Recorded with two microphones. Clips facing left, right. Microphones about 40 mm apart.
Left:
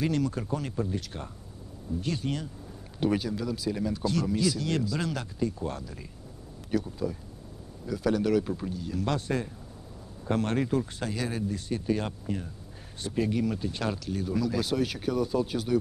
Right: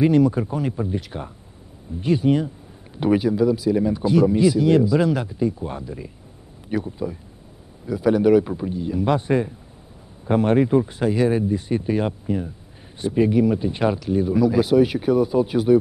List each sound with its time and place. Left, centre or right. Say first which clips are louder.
0.0 s speech: right 11 dB; centre